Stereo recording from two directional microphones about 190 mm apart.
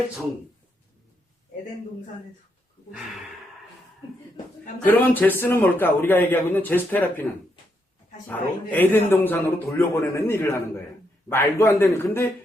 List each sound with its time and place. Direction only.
4.9 s a man's voice: 10° left (ahead or behind)